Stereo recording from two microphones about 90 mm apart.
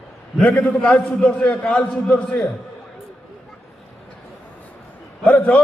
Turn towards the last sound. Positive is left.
turn(degrees=15)  # may be behind; listen again after turning